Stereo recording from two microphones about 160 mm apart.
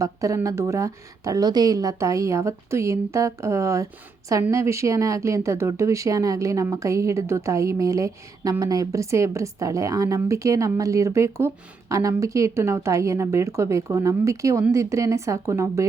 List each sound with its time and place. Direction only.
0.0 s speech: 20° right (ahead or behind)